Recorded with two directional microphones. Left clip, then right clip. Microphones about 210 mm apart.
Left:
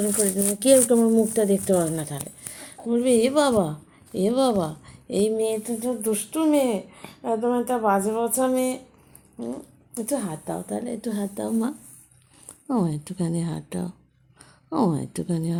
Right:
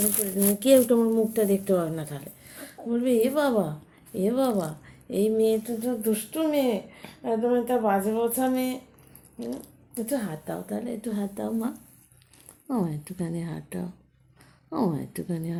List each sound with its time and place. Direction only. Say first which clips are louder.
0.6 s a woman's voice: left 2 dB; 35° left (ahead or behind)
9.9 s a woman's voice: left 2 dB; 40° left (ahead or behind)